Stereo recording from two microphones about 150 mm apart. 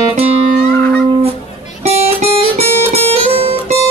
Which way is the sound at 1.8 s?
45° right (ahead or behind).